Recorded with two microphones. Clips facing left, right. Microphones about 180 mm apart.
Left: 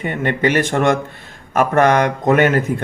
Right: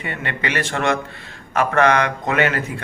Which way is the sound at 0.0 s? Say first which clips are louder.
Left 8 dB; 50° left (ahead or behind).